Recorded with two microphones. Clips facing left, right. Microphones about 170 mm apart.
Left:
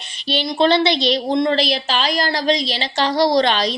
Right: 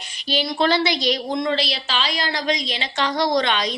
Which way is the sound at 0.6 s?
25° left (ahead or behind).